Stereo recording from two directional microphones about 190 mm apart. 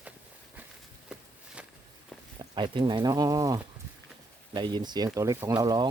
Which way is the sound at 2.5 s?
25° right (ahead or behind).